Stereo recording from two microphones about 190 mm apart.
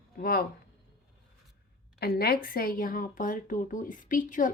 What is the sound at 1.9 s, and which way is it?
A woman's voice, 55° left (ahead or behind).